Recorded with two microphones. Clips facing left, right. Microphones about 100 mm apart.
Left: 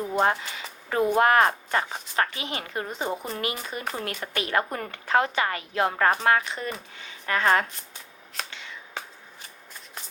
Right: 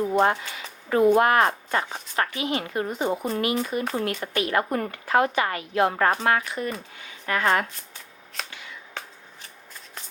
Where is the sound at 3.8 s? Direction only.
5° left (ahead or behind).